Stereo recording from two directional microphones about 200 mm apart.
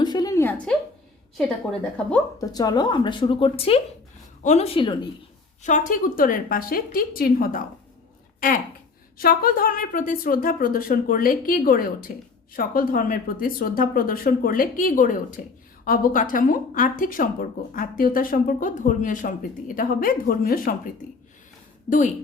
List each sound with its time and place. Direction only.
0.0 s a sound: 20° left (ahead or behind)
1.4 s a woman's voice: 5° left (ahead or behind)
2.4 s speech: 20° left (ahead or behind)
5.6 s speech: 40° left (ahead or behind)
9.1 s a woman's voice: 45° left (ahead or behind)